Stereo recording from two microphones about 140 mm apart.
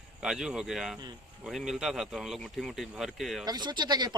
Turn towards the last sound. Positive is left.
turn(degrees=-30)  # may be behind; listen again after turning